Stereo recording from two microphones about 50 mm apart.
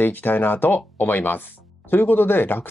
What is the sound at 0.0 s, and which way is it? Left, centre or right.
Speech, left.